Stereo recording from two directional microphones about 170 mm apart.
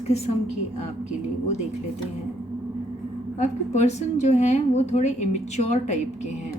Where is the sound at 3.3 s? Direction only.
40° left (ahead or behind).